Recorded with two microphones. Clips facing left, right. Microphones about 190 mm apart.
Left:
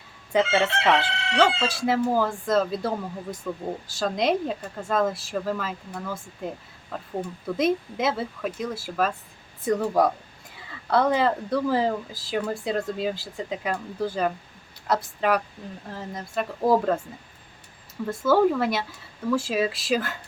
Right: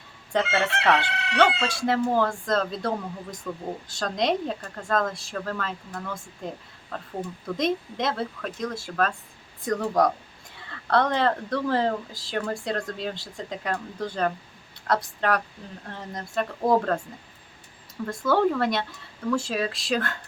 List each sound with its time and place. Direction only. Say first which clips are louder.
0.5 s chicken: left 2 dB; 25° left (ahead or behind)
1.6 s speech: left 1 dB; 5° left (ahead or behind)
18.0 s speech: left 2 dB; 5° left (ahead or behind)